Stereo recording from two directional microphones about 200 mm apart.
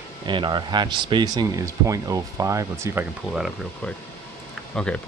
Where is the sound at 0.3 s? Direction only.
25° right (ahead or behind).